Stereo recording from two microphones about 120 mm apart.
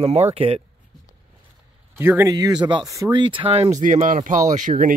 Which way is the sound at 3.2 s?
45° right (ahead or behind).